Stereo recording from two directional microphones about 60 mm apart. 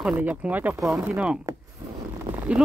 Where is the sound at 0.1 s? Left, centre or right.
Right.